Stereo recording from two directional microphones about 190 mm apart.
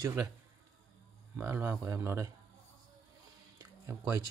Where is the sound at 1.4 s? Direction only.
15° right (ahead or behind).